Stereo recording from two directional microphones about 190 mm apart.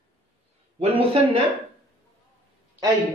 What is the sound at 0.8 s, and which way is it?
Speech, 35° right (ahead or behind).